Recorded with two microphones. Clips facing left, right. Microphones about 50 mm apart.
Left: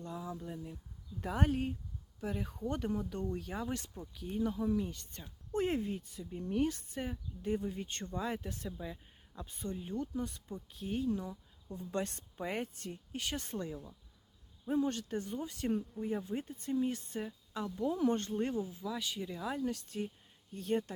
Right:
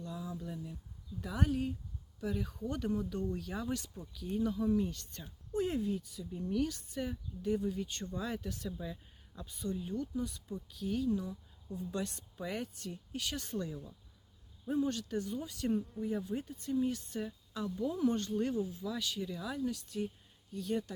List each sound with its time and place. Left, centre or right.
0.0 s speech: left
1.2 s speech: left
2.2 s speech: left
4.6 s speech: centre
4.9 s speech: left
5.5 s speech: left
9.5 s speech: left
11.8 s speech: left